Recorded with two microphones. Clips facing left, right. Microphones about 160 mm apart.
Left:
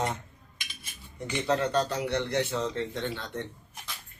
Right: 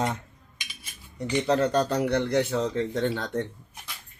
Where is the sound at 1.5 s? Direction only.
40° right (ahead or behind).